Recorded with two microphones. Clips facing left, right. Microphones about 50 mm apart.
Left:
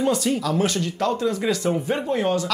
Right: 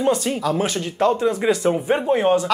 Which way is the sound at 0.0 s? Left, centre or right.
Centre.